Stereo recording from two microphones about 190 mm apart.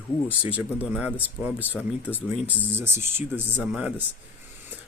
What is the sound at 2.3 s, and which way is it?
Speech, 10° right (ahead or behind).